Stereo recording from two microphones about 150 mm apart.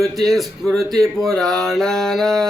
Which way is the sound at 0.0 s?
Centre (ahead or behind).